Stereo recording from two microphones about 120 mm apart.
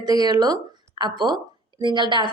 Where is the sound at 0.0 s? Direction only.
35° right (ahead or behind).